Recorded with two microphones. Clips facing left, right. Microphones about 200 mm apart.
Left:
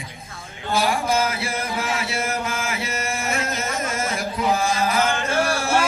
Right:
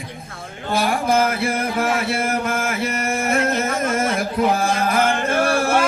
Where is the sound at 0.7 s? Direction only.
55° right (ahead or behind).